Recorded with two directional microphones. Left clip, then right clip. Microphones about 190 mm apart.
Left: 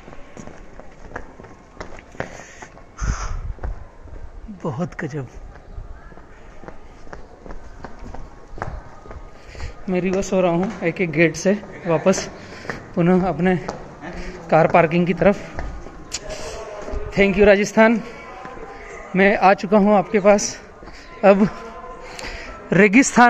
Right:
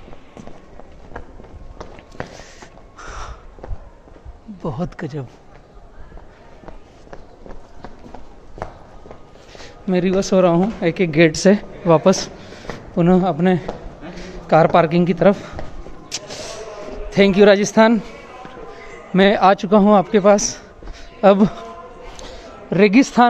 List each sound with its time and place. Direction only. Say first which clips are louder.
4.6 s speech: even; 5° right (ahead or behind)
9.8 s speech: right 4 dB; 35° right (ahead or behind)
12.9 s a woman's voice: right 2 dB; 15° right (ahead or behind)
17.1 s a man's voice: right 2 dB; 30° right (ahead or behind)
19.1 s a man's voice: right 1 dB; 25° right (ahead or behind)
22.7 s a man's voice: even; 5° left (ahead or behind)